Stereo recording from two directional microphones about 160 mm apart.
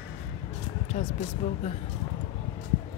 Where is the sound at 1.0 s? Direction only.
40° left (ahead or behind).